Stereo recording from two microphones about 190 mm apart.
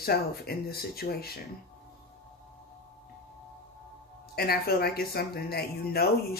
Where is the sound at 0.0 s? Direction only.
55° left (ahead or behind).